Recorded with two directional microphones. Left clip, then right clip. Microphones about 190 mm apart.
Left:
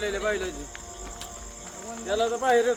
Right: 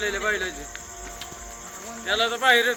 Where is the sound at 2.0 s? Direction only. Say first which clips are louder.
Right 3 dB; 45° left (ahead or behind).